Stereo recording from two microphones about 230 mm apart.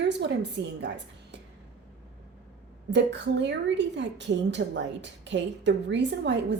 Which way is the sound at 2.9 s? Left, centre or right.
Right.